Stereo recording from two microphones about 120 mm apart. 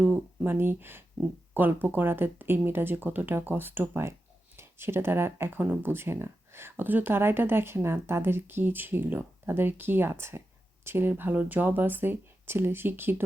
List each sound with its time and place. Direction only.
0.0 s speech: 15° right (ahead or behind)